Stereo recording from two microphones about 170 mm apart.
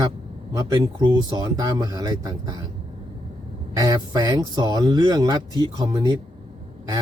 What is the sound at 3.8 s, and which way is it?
Speech, 20° right (ahead or behind).